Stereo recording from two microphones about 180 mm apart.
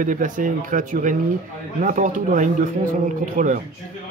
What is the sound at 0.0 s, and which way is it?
Speech, 45° right (ahead or behind).